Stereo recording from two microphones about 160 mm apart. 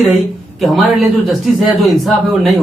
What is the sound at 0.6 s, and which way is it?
Speech, centre (ahead or behind).